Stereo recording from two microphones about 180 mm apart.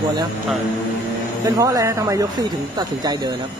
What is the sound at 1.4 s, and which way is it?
Speech, 20° right (ahead or behind).